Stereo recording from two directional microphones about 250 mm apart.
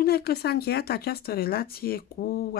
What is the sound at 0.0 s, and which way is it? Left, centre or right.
Speech, left.